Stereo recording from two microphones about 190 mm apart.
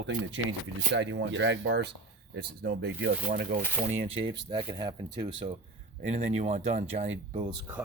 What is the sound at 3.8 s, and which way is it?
Speech, 35° right (ahead or behind).